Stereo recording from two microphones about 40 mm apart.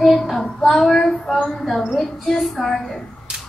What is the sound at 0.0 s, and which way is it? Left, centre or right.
Child singing, centre.